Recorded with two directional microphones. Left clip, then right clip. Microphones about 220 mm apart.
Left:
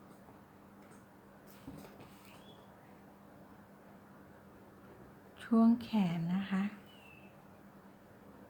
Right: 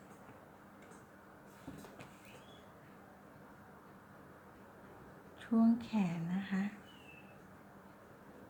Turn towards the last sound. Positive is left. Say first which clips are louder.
# left 2 dB
turn(degrees=20)  # may be behind; listen again after turning